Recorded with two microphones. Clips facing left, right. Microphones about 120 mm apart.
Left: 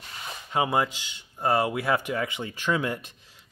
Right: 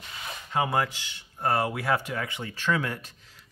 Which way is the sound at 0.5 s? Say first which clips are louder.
Left 2 dB; 20° left (ahead or behind).